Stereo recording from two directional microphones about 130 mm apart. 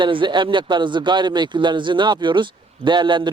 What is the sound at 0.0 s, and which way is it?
Speech, 40° right (ahead or behind).